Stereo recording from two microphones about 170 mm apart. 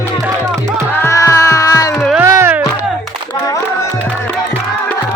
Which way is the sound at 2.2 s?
15° right (ahead or behind).